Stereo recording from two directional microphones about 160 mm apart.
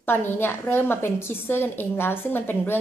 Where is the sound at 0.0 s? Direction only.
15° left (ahead or behind).